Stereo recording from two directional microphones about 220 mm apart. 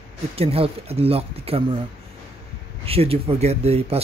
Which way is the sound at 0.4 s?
25° right (ahead or behind).